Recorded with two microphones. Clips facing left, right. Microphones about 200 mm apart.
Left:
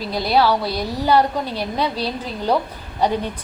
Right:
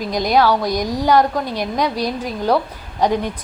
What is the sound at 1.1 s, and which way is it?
Speech, 10° left (ahead or behind).